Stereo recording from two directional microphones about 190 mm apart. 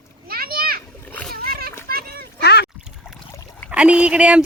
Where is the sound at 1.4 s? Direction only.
50° right (ahead or behind).